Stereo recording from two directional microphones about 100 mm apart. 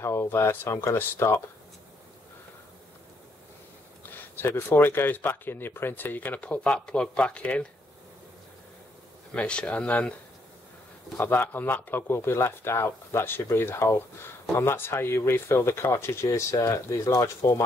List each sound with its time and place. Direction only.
0.0 s speech: 25° left (ahead or behind)
4.4 s speech: 20° left (ahead or behind)
9.3 s speech: 10° left (ahead or behind)
11.1 s speech: 20° left (ahead or behind)